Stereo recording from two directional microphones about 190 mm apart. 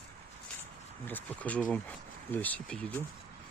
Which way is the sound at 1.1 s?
10° left (ahead or behind).